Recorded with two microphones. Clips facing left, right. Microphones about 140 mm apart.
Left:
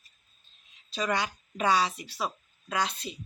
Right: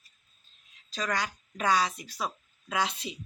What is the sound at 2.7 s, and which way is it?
Speech, 10° right (ahead or behind).